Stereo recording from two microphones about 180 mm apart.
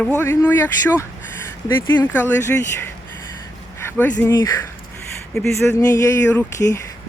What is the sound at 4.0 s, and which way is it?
Speech, 10° left (ahead or behind).